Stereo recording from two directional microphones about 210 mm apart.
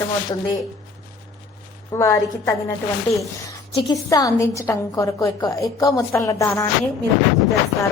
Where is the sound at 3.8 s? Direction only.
15° left (ahead or behind).